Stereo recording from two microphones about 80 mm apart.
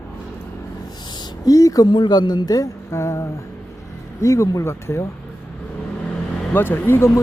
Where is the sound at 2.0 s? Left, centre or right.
Left.